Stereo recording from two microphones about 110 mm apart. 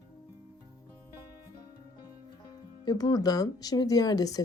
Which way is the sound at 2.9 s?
35° left (ahead or behind).